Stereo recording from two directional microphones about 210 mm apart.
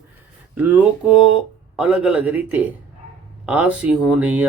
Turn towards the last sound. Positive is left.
turn(degrees=-5)  # may be behind; listen again after turning